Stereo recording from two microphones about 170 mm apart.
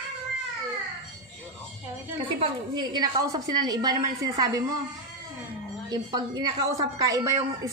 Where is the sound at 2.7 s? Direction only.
25° right (ahead or behind).